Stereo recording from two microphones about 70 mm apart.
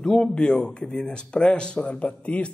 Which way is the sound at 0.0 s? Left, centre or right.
Centre.